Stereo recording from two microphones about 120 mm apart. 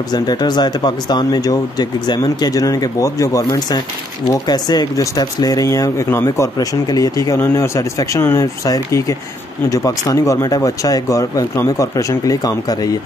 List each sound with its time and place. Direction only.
0.1 s speech: 35° left (ahead or behind)